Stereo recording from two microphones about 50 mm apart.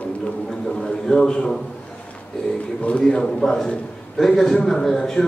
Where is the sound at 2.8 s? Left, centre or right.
Centre.